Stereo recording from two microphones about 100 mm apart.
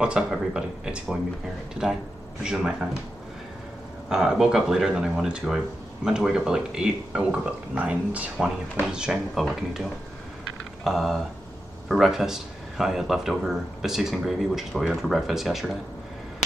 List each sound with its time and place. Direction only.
0.0 s speech: 10° right (ahead or behind)
2.4 s speech: 5° right (ahead or behind)
4.1 s speech: 5° right (ahead or behind)